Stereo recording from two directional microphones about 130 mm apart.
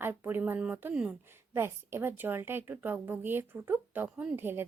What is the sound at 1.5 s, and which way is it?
A woman's voice, 20° right (ahead or behind).